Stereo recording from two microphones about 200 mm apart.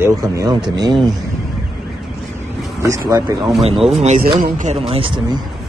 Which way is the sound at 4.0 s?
35° right (ahead or behind).